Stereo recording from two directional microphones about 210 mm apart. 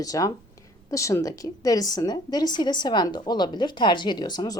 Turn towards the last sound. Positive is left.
turn(degrees=20)  # may be behind; listen again after turning